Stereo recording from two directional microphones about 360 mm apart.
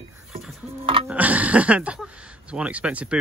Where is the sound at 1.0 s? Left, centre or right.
Centre.